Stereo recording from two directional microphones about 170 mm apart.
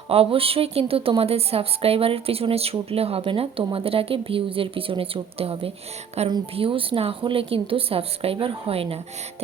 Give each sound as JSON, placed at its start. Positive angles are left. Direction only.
{"t": 0.1, "sound": "a woman's voice", "side_deg": -35}